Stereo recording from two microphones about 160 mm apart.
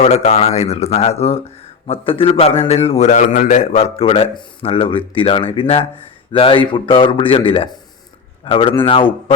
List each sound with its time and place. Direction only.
0.0 s a man's voice: 45° left (ahead or behind)